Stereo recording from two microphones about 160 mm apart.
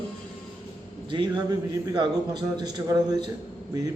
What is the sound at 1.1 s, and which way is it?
A man's voice, 30° right (ahead or behind).